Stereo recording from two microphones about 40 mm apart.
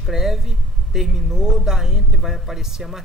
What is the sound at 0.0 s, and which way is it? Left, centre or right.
Speech, centre.